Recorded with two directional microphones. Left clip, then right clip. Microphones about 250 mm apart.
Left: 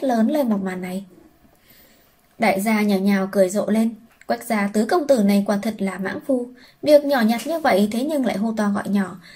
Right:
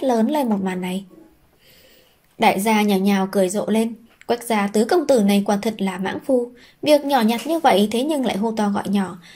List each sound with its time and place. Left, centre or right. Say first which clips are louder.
0.0 s speech: right 1 dB; right
2.3 s speech: right 3 dB; right